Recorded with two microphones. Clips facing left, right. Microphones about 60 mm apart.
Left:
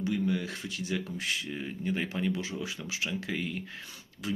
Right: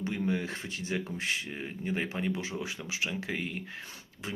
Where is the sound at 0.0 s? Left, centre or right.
Right.